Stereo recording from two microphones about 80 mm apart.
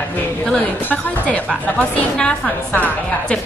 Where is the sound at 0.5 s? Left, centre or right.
Centre.